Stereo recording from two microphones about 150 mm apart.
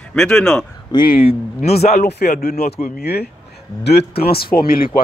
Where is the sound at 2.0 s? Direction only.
90° left; by 5.0 s 75° left (ahead or behind).